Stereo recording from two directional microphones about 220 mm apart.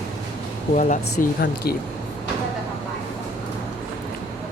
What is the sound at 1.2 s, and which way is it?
Speech, 45° left (ahead or behind).